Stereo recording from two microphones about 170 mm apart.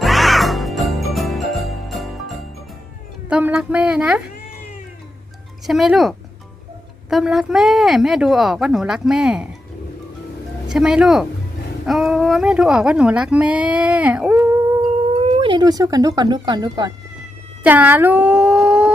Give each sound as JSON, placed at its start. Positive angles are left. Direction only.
{"t": 0.0, "sound": "music", "side_deg": 0}
{"t": 3.2, "sound": "speech", "side_deg": -5}
{"t": 5.6, "sound": "speech", "side_deg": 0}
{"t": 10.7, "sound": "speech", "side_deg": -5}
{"t": 15.2, "sound": "speech", "side_deg": -35}
{"t": 17.6, "sound": "speech", "side_deg": -10}